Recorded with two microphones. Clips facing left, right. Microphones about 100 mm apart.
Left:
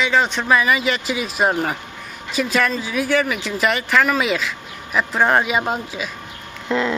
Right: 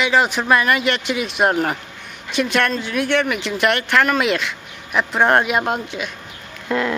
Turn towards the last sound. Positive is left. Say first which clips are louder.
# even
turn(degrees=-5)  # may be behind; listen again after turning